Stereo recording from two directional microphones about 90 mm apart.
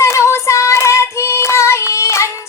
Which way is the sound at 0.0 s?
30° left (ahead or behind).